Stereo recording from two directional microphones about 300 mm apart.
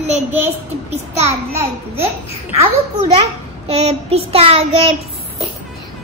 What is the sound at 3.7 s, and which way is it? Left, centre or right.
Child singing, right.